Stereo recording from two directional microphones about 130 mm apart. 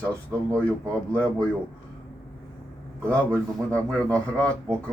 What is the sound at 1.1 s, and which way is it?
Speech, 10° left (ahead or behind).